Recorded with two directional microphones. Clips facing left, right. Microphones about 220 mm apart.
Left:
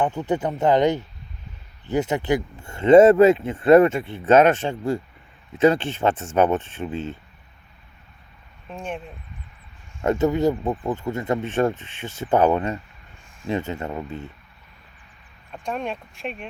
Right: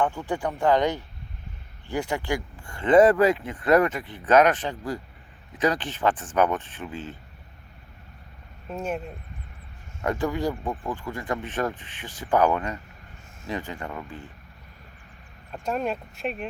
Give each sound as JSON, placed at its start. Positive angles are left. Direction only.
{"t": 0.0, "sound": "speech", "side_deg": 20}
{"t": 8.7, "sound": "speech", "side_deg": -5}
{"t": 10.0, "sound": "speech", "side_deg": 25}
{"t": 15.5, "sound": "speech", "side_deg": 0}